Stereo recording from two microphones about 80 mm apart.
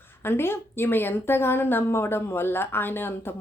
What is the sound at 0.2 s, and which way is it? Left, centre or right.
Speech, left.